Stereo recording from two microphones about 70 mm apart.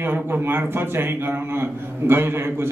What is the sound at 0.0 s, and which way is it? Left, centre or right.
A man's voice, right.